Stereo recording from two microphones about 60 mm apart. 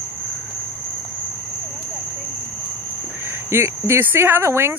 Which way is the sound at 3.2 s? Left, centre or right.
Right.